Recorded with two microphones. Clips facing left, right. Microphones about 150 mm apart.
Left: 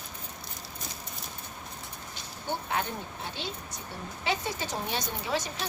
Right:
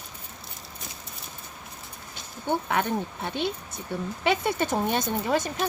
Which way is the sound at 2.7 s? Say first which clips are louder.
Right 6 dB; 60° right (ahead or behind).